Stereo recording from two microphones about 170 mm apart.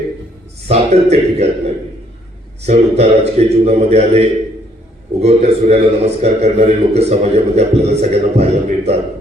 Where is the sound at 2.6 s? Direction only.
40° right (ahead or behind).